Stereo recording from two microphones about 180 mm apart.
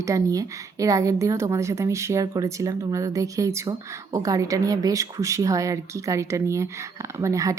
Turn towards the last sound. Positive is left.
turn(degrees=-20)  # may be behind; listen again after turning